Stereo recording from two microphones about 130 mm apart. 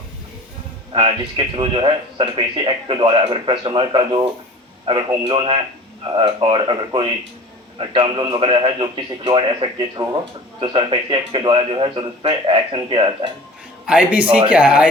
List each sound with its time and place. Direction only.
0.9 s speech: 45° right (ahead or behind)
13.8 s a man's voice: 10° right (ahead or behind)